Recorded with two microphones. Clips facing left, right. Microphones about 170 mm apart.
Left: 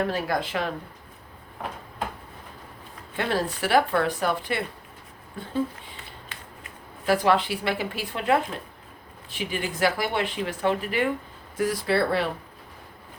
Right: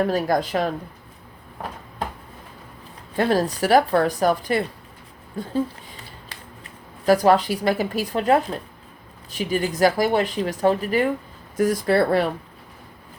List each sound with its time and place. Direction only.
0.1 s speech: 40° right (ahead or behind)
3.2 s speech: 40° right (ahead or behind)